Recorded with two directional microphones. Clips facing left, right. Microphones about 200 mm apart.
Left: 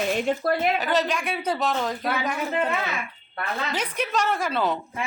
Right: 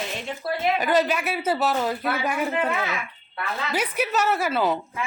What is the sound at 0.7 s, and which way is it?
A woman's voice, 10° right (ahead or behind).